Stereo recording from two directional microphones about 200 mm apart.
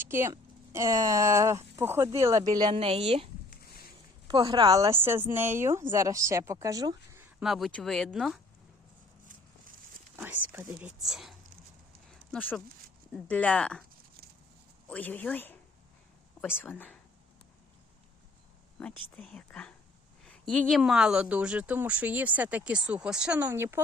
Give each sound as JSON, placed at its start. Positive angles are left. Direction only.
{"t": 0.0, "sound": "speech", "side_deg": -10}
{"t": 4.3, "sound": "speech", "side_deg": -25}
{"t": 7.4, "sound": "speech", "side_deg": 0}
{"t": 10.2, "sound": "speech", "side_deg": -10}
{"t": 14.8, "sound": "speech", "side_deg": 10}
{"t": 18.8, "sound": "speech", "side_deg": 5}